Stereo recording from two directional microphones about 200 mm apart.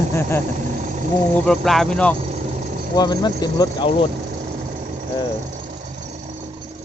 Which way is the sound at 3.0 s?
20° left (ahead or behind).